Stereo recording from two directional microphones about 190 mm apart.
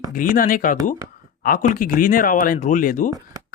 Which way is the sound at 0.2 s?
45° left (ahead or behind).